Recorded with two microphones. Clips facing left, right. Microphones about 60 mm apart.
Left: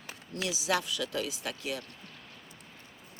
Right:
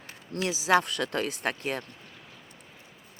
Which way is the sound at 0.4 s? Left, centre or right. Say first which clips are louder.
Right 7 dB; right.